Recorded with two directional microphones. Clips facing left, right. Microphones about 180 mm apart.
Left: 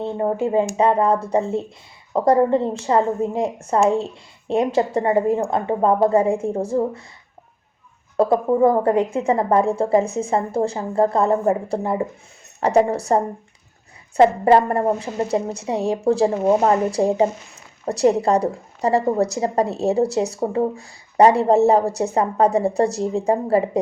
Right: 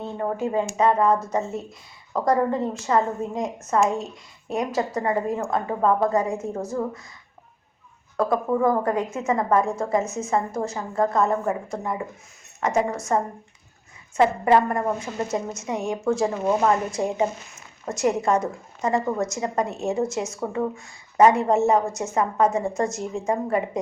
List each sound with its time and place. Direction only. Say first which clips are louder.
0.0 s a woman's voice: left 5 dB; 25° left (ahead or behind)
8.1 s a woman's voice: left 5 dB; 30° left (ahead or behind)